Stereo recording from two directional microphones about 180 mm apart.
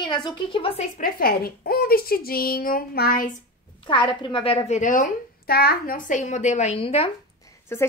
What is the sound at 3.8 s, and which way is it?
A woman's voice, 25° left (ahead or behind).